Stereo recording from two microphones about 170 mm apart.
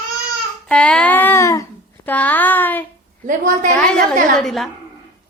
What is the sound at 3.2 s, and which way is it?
Speech, 50° right (ahead or behind).